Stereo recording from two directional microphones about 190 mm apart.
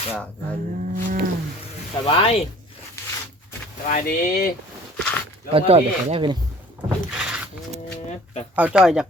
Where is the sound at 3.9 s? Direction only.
45° left (ahead or behind).